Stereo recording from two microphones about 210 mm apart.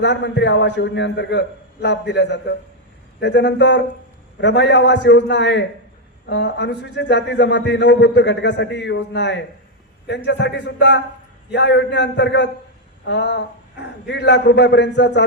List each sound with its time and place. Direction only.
0.0 s a man's voice: 55° left (ahead or behind)